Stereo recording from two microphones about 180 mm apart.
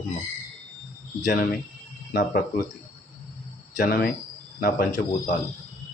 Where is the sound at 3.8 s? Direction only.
50° left (ahead or behind).